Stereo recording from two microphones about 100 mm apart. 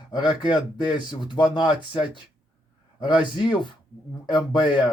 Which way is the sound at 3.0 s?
50° left (ahead or behind).